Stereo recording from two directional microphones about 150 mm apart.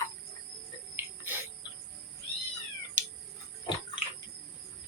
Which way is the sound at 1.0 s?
15° right (ahead or behind).